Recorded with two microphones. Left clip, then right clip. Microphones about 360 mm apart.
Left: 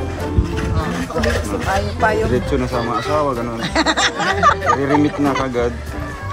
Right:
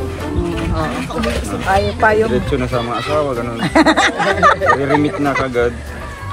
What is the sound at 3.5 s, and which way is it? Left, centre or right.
Speech, centre.